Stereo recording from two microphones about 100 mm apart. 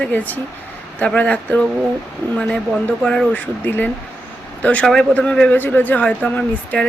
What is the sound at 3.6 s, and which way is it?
Speech, 20° left (ahead or behind).